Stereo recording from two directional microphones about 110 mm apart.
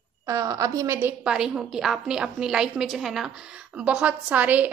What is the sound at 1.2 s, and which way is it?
A woman's voice, 5° right (ahead or behind).